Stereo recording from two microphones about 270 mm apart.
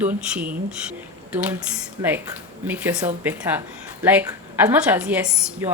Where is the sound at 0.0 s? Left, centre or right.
Centre.